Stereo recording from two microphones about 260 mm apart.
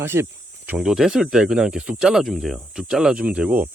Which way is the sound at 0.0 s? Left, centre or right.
Centre.